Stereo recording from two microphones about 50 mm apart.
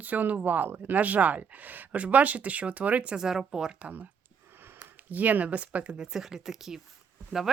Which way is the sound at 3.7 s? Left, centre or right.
Right.